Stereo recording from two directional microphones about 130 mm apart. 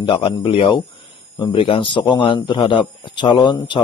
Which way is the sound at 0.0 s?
40° left (ahead or behind).